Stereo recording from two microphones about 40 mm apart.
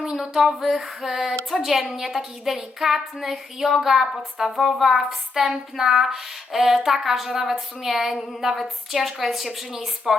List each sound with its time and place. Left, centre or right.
0.2 s female singing: centre
1.5 s speech: centre